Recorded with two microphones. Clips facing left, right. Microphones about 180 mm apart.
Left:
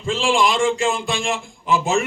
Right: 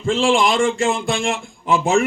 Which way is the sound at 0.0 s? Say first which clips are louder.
Right 2 dB; 55° right (ahead or behind).